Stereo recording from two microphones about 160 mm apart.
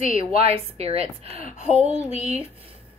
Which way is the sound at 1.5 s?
45° left (ahead or behind).